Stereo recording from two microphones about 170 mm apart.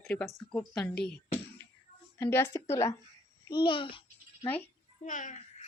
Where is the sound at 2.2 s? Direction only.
15° left (ahead or behind).